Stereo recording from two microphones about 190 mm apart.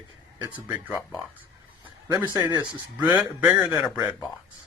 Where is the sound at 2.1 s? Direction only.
20° right (ahead or behind).